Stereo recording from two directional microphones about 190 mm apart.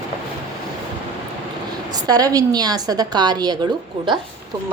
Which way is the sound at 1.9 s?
20° right (ahead or behind).